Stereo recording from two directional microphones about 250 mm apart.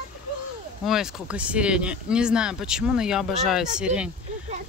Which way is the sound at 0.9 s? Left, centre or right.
Centre.